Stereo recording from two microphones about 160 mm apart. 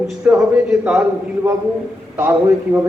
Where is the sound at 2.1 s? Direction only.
10° right (ahead or behind).